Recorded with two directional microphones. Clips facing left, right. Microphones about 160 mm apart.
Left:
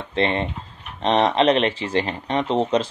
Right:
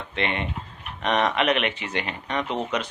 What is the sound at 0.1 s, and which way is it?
Speech, 30° left (ahead or behind).